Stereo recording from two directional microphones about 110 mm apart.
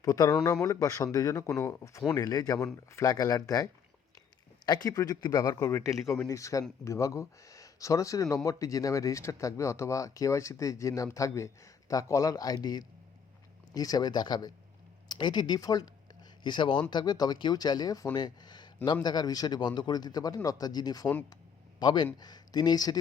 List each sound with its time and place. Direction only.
0.0 s speech: 35° left (ahead or behind)
13.7 s speech: 35° left (ahead or behind)